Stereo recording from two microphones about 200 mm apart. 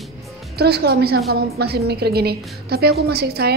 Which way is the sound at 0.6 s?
55° right (ahead or behind).